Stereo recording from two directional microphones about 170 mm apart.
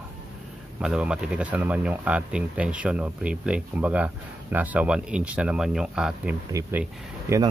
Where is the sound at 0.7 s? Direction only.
5° right (ahead or behind).